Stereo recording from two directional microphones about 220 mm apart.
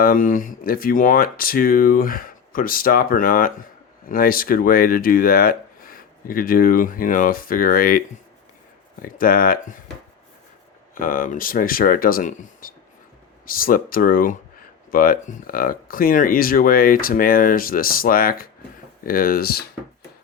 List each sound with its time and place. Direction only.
0.0 s speech: 40° left (ahead or behind)
10.9 s speech: 40° left (ahead or behind)